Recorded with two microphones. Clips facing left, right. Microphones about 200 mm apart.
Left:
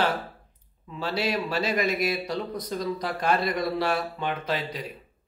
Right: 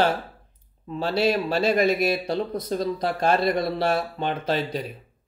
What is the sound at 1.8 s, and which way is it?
Speech, 25° right (ahead or behind).